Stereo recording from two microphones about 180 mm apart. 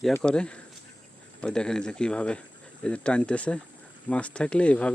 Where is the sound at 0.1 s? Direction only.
5° left (ahead or behind).